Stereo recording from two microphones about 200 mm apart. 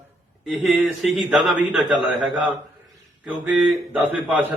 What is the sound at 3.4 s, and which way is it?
A man's voice, 5° right (ahead or behind).